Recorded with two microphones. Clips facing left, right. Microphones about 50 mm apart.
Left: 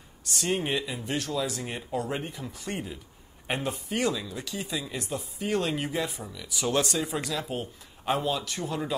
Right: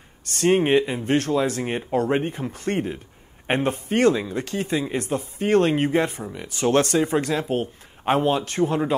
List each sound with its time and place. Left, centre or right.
0.2 s speech: right